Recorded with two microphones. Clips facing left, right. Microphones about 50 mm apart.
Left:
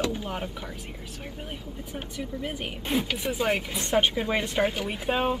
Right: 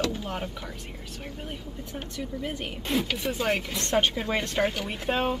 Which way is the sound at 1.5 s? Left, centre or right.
Centre.